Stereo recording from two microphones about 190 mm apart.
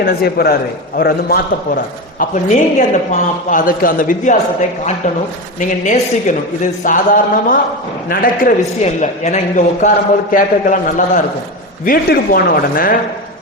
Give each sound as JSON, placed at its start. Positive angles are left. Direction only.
{"t": 0.0, "sound": "a man's voice", "side_deg": 55}
{"t": 5.5, "sound": "a man's voice", "side_deg": 40}
{"t": 11.9, "sound": "a man's voice", "side_deg": 50}